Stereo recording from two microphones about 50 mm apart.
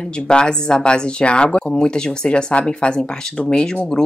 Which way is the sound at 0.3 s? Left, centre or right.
Centre.